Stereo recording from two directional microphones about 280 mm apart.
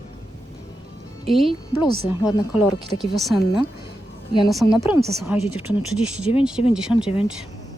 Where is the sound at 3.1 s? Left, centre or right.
Centre.